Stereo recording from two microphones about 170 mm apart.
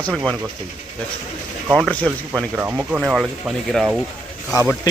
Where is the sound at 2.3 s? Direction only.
10° right (ahead or behind).